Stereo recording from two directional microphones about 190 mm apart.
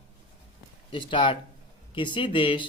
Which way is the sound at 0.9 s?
25° left (ahead or behind).